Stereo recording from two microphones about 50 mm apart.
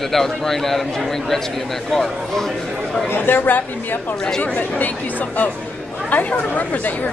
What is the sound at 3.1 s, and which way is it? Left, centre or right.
Speech, left.